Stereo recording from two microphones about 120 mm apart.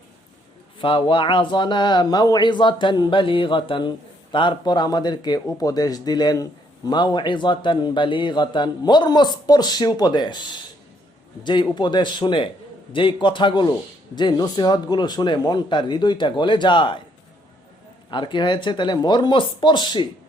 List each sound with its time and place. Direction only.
0.8 s a man's voice: 45° left (ahead or behind)
18.1 s a man's voice: 40° left (ahead or behind)